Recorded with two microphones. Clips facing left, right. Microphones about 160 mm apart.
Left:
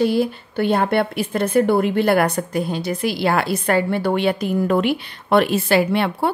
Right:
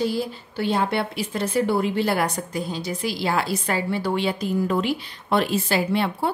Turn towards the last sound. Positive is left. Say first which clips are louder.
# left 4 dB
turn(degrees=65)  # may be behind; listen again after turning